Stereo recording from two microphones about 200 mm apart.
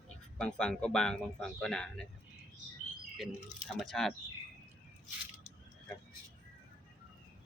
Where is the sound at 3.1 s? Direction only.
Centre (ahead or behind).